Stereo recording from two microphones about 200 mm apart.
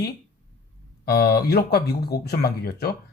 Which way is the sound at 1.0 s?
50° left (ahead or behind).